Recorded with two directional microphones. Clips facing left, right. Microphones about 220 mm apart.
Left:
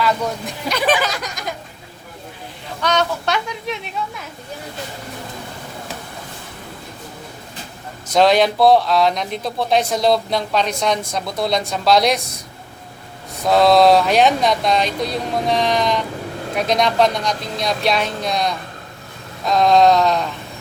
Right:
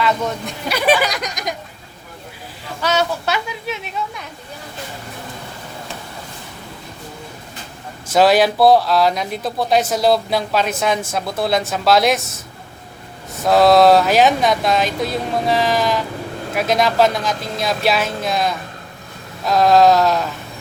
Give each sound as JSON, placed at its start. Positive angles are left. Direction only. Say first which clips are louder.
{"t": 0.0, "sound": "a man's voice", "louder": "even", "side_deg": 0}
{"t": 1.0, "sound": "a sound", "louder": "right 2 dB", "side_deg": -15}
{"t": 2.8, "sound": "a man's voice", "louder": "even", "side_deg": -5}
{"t": 8.0, "sound": "a man's voice", "louder": "right 1 dB", "side_deg": -5}
{"t": 13.4, "sound": "a man's voice", "louder": "right 1 dB", "side_deg": 0}